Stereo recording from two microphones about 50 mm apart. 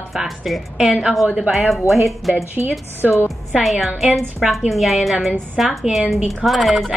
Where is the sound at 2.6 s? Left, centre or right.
Right.